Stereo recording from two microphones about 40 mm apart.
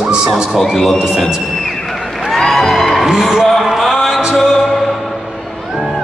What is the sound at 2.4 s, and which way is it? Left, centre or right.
Music, centre.